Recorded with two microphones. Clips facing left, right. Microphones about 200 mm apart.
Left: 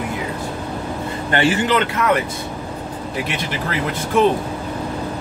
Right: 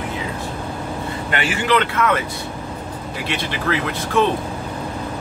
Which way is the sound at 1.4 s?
20° left (ahead or behind).